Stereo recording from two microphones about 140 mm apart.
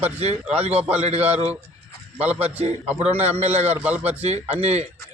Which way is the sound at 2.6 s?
45° right (ahead or behind).